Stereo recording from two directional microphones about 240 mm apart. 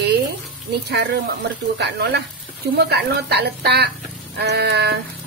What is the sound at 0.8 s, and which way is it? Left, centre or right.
Speech, right.